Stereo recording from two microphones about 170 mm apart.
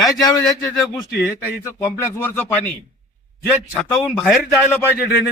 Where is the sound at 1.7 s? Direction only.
15° left (ahead or behind).